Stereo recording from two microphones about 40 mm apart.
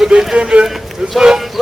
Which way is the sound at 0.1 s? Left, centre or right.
Right.